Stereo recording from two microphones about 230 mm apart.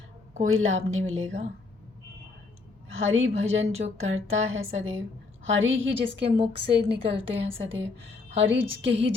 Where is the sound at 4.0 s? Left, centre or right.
Right.